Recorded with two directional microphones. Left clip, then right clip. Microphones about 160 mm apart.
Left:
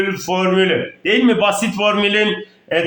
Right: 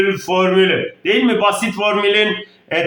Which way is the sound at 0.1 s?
5° left (ahead or behind).